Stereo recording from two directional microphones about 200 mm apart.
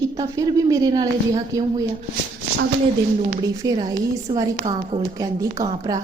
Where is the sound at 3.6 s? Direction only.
15° right (ahead or behind).